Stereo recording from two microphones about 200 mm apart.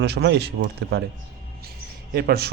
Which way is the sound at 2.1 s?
50° right (ahead or behind).